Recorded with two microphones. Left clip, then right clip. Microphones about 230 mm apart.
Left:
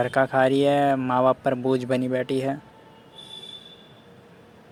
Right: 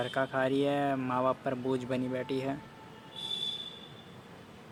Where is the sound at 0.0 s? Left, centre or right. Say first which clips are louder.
Left 10 dB; left.